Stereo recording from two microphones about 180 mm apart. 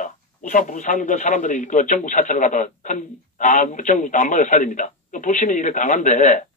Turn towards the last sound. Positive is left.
turn(degrees=45)  # may be behind; listen again after turning